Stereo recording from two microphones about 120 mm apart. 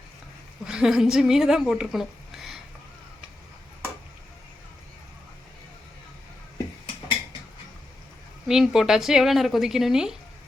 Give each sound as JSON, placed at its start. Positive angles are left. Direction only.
{"t": 0.6, "sound": "a woman's voice", "side_deg": -5}
{"t": 8.4, "sound": "speech", "side_deg": -5}